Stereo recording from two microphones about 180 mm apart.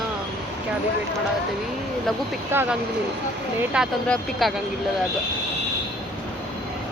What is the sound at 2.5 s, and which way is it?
Speech, 10° right (ahead or behind).